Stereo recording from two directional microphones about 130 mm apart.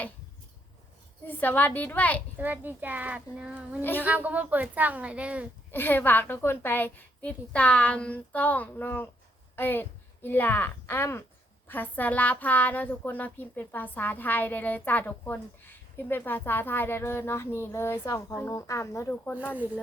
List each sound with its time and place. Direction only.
1.3 s a woman's voice: 15° left (ahead or behind)
2.4 s a child's voice: 15° right (ahead or behind)
5.7 s a woman's voice: 15° left (ahead or behind)